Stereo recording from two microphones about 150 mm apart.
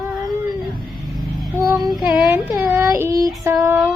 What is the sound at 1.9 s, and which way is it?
Female singing, centre (ahead or behind).